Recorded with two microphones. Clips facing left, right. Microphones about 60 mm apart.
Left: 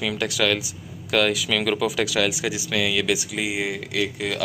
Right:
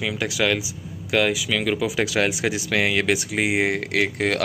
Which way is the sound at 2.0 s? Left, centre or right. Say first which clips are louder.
Right 1 dB; right.